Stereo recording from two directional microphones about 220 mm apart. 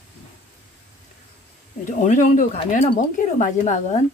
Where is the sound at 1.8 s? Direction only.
35° left (ahead or behind).